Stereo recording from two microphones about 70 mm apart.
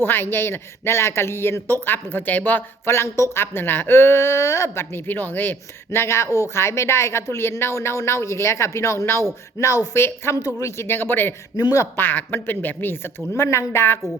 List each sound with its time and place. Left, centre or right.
0.0 s speech: left
9.6 s speech: left
9.9 s speech: left
10.3 s speech: left
11.5 s speech: left
11.9 s speech: left